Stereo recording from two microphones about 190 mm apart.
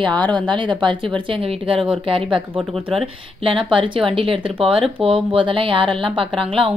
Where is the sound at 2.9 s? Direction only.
25° right (ahead or behind).